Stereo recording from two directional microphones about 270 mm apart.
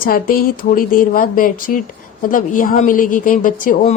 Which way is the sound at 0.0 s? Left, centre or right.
Left.